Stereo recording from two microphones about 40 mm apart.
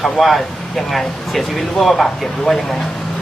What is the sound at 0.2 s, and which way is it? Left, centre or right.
Speech, centre.